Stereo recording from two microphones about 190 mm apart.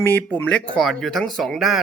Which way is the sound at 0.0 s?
10° left (ahead or behind).